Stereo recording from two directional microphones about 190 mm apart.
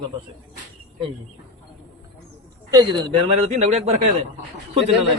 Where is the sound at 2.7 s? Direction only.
25° right (ahead or behind).